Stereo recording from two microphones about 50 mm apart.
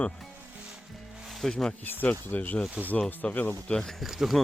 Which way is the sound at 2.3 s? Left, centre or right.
Left.